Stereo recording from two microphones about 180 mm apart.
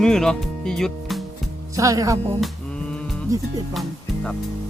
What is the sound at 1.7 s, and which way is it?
Music, 20° right (ahead or behind).